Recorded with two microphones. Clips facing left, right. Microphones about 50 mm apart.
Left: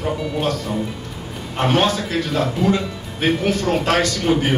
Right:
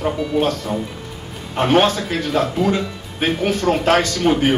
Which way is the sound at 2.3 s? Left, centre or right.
Centre.